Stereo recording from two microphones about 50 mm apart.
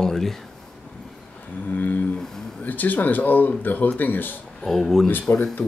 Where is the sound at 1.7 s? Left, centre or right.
Left.